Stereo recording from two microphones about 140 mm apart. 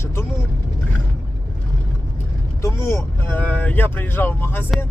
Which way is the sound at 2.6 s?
20° left (ahead or behind).